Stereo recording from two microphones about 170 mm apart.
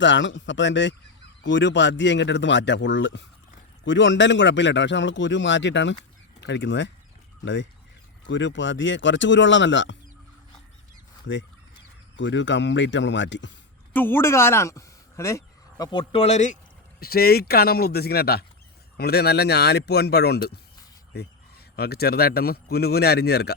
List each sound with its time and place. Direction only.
0.0 s a man's voice: 90° left
12.1 s a man's voice: 90° left
13.9 s speech: 10° left (ahead or behind); by 16.6 s 45° left (ahead or behind)
17.0 s speech: 65° left (ahead or behind)
21.8 s speech: 70° left (ahead or behind)